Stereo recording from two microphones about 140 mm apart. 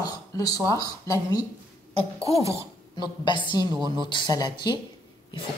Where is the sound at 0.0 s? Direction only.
25° left (ahead or behind).